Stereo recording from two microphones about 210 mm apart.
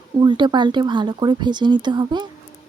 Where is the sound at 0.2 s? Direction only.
20° right (ahead or behind).